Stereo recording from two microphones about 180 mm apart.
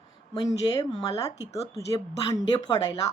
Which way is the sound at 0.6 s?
20° left (ahead or behind).